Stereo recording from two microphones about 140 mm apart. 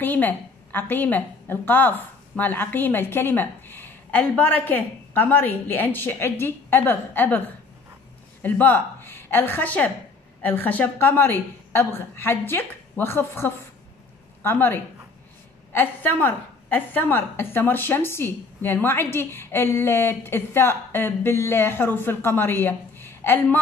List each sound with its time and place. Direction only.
0.0 s a woman's voice: 15° left (ahead or behind)